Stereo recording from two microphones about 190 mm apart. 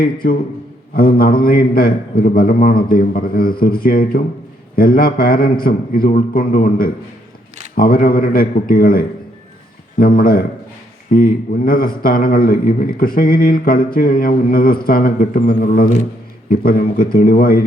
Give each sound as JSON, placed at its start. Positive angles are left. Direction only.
{"t": 0.0, "sound": "speech", "side_deg": 50}